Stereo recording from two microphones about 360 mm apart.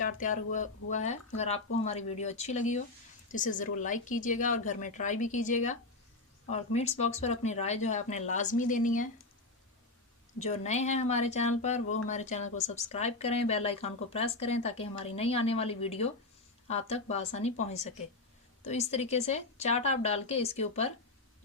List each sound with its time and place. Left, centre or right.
0.0 s a woman's voice: left
10.4 s a woman's voice: centre